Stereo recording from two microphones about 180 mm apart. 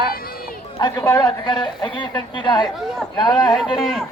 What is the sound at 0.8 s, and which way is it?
A man's voice, 25° left (ahead or behind).